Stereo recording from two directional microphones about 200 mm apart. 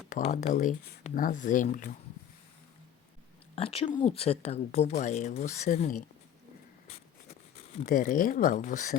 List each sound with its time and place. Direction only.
0.1 s speech: 35° left (ahead or behind)
3.5 s speech: 30° left (ahead or behind)
7.5 s speech: 40° left (ahead or behind)